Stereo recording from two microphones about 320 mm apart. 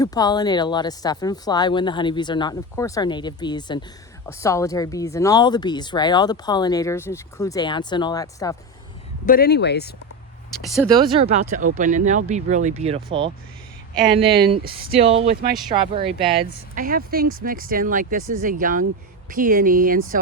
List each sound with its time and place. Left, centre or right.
0.0 s speech: centre
9.2 s speech: left
11.0 s speech: centre
14.9 s speech: centre